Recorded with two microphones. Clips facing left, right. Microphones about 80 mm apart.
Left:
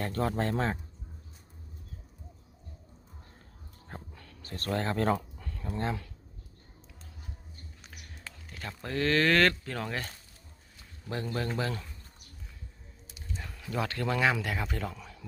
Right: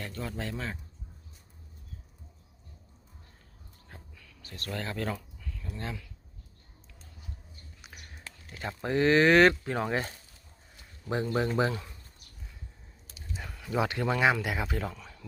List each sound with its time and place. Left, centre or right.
0.0 s speech: left
3.8 s a sound: left
4.4 s speech: left
8.5 s speech: right
11.1 s speech: centre
13.3 s a sound: centre
13.7 s a man's voice: centre